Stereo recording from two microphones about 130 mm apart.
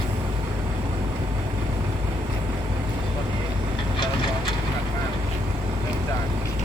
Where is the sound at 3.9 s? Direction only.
40° left (ahead or behind).